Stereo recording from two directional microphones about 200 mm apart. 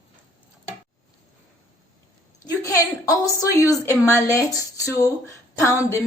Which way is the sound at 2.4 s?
15° left (ahead or behind).